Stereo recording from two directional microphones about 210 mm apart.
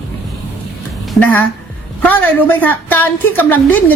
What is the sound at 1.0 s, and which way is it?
Music, 5° left (ahead or behind).